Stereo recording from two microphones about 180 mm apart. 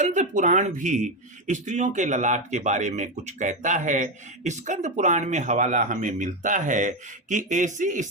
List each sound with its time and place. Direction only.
0.0 s speech: 40° right (ahead or behind)